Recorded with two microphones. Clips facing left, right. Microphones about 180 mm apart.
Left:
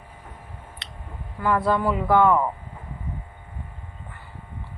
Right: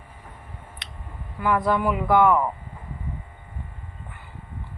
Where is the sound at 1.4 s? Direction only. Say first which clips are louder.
Even; 15° right (ahead or behind).